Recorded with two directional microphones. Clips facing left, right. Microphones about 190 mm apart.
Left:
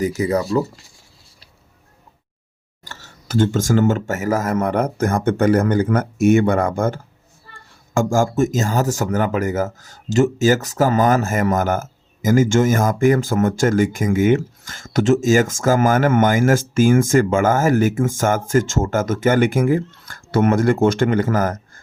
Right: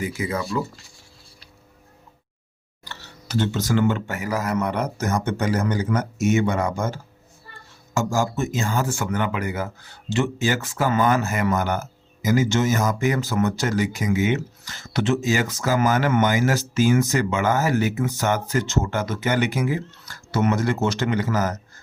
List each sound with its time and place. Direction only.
0.0 s speech: 40° left (ahead or behind)
2.8 s speech: 45° left (ahead or behind)